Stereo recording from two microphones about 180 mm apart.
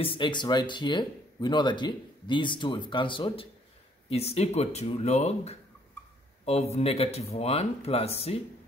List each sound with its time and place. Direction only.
0.0 s speech: 25° left (ahead or behind)